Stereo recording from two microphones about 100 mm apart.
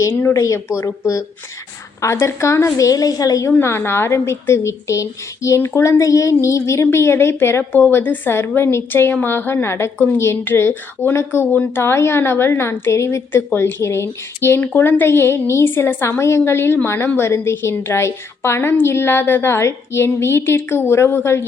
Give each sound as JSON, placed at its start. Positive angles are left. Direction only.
{"t": 0.0, "sound": "a woman's voice", "side_deg": 25}
{"t": 3.5, "sound": "a woman's voice", "side_deg": 25}